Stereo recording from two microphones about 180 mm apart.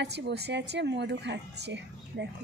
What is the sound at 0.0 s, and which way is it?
A woman's voice, 70° right (ahead or behind).